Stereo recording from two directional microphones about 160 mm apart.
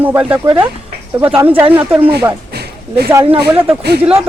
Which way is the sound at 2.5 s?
90° right.